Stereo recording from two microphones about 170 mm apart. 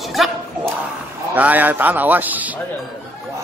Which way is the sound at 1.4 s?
10° right (ahead or behind).